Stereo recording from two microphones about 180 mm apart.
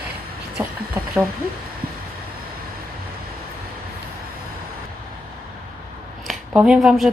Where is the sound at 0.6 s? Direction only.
15° right (ahead or behind).